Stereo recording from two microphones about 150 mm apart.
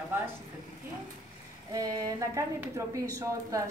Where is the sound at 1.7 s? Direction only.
25° right (ahead or behind).